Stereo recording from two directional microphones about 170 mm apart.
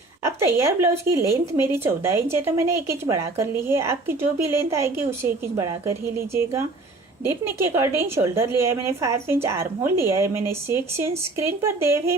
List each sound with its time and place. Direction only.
0.3 s speech: 15° right (ahead or behind)